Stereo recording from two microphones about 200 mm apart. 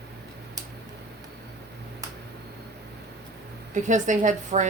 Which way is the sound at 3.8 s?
40° right (ahead or behind).